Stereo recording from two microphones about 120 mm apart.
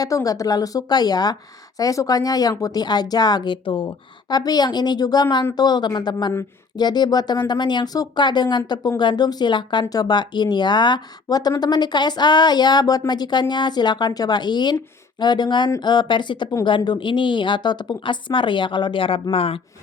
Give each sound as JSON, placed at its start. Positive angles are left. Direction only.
{"t": 0.0, "sound": "speech", "side_deg": 30}